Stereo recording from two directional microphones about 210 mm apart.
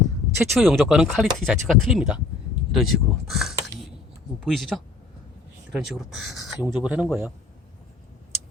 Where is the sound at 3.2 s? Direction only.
Centre (ahead or behind).